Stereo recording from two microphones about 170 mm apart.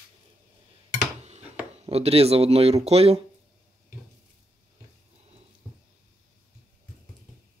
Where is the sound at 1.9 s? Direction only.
35° right (ahead or behind).